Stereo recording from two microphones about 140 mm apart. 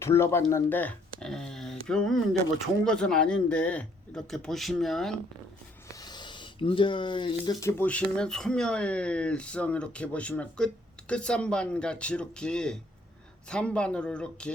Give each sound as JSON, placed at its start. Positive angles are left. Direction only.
{"t": 0.0, "sound": "speech", "side_deg": 20}
{"t": 6.0, "sound": "a sound", "side_deg": 30}
{"t": 7.6, "sound": "speech", "side_deg": 20}
{"t": 7.9, "sound": "speech", "side_deg": 10}